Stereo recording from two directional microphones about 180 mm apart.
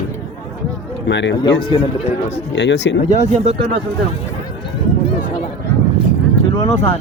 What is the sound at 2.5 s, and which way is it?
Speech, 75° left (ahead or behind).